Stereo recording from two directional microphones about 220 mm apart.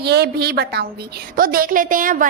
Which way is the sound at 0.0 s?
45° right (ahead or behind).